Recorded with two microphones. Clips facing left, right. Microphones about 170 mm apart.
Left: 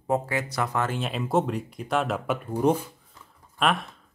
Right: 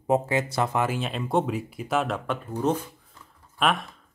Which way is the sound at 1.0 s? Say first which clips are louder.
Even; centre (ahead or behind).